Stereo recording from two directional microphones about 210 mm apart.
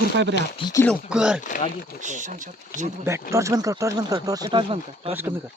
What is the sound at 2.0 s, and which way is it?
Speech, 35° right (ahead or behind).